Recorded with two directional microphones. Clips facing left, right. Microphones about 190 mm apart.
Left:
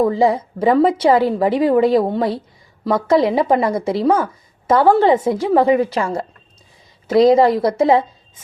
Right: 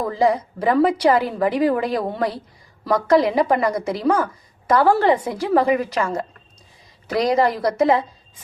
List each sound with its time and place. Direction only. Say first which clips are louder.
0.1 s speech: left 3 dB; 25° left (ahead or behind)